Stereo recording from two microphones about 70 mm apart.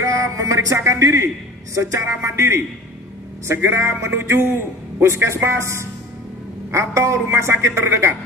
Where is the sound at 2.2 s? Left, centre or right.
Right.